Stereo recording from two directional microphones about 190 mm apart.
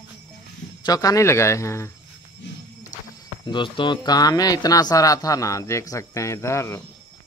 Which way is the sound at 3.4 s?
25° left (ahead or behind).